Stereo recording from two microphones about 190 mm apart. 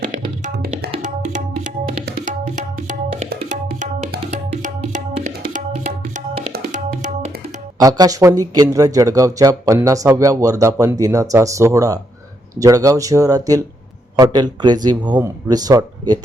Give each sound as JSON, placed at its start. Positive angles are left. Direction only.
{"t": 0.5, "sound": "tabla", "side_deg": -55}
{"t": 1.0, "sound": "tabla", "side_deg": -40}
{"t": 2.0, "sound": "music", "side_deg": -45}
{"t": 7.8, "sound": "speech", "side_deg": -20}